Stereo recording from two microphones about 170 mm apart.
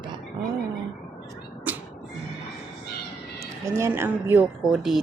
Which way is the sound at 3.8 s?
10° right (ahead or behind).